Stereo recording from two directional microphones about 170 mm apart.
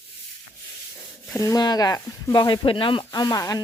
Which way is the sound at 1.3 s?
20° left (ahead or behind).